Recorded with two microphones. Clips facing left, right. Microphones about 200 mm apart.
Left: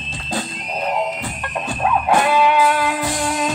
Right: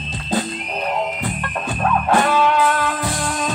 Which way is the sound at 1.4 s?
15° left (ahead or behind).